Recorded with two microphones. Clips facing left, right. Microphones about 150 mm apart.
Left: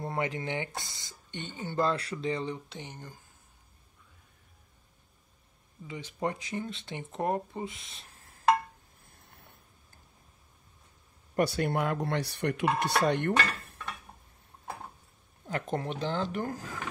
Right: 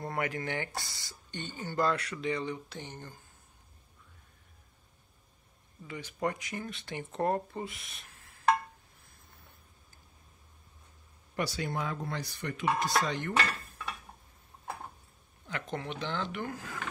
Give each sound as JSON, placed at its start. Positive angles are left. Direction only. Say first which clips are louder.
{"t": 0.0, "sound": "speech", "louder": "left 1 dB", "side_deg": 20}
{"t": 2.8, "sound": "speech", "louder": "even", "side_deg": 10}
{"t": 5.9, "sound": "speech", "louder": "left 1 dB", "side_deg": 20}
{"t": 11.3, "sound": "speech", "louder": "left 6 dB", "side_deg": 55}
{"t": 15.4, "sound": "speech", "louder": "left 5 dB", "side_deg": 40}